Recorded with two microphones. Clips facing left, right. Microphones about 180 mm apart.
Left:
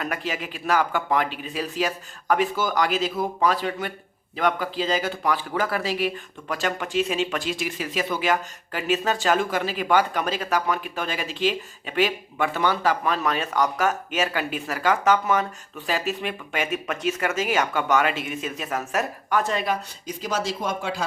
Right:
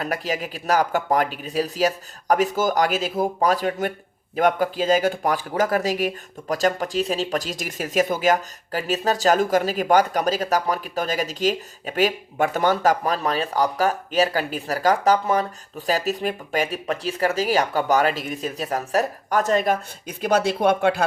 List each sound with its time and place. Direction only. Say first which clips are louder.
0.0 s speech: right 3 dB; 40° right (ahead or behind); by 21.0 s 65° right (ahead or behind)